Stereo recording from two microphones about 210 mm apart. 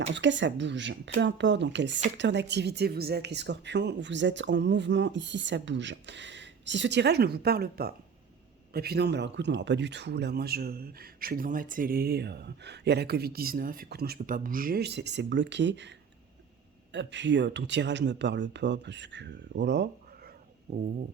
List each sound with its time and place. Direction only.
0.1 s a woman's voice: 60° right (ahead or behind)